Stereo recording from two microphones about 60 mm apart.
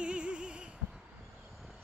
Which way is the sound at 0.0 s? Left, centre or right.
Centre.